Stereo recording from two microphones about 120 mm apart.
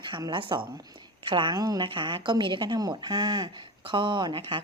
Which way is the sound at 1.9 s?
45° right (ahead or behind).